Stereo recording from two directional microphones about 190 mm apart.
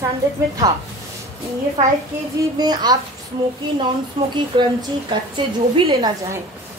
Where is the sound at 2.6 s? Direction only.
20° right (ahead or behind).